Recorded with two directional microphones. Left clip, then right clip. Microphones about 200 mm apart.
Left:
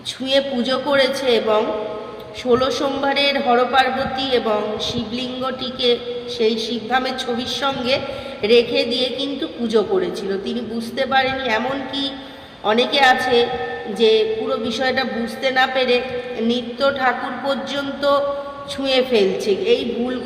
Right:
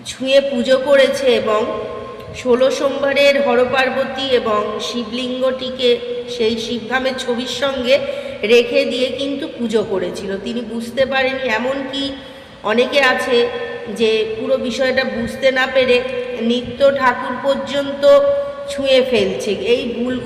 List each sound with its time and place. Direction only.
0.3 s a man's voice: 15° left (ahead or behind)
6.4 s a man's voice: 15° left (ahead or behind)